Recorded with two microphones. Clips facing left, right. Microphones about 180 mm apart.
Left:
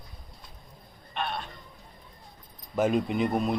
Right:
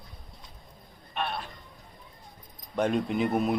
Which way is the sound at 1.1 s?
Centre (ahead or behind).